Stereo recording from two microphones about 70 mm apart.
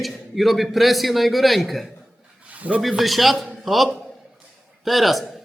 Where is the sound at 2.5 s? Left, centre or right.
Right.